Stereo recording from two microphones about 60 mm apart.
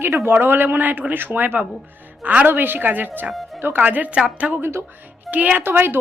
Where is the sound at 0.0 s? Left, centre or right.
Right.